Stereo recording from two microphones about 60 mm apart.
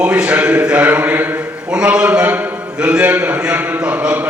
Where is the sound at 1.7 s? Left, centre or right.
Centre.